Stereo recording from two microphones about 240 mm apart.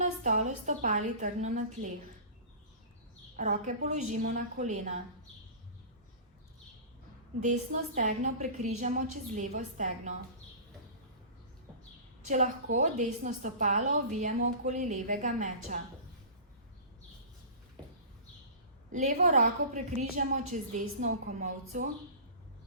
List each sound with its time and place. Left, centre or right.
0.0 s a woman's voice: right
3.3 s a woman's voice: right
7.4 s a woman's voice: right
12.2 s a woman's voice: right
18.9 s a woman's voice: right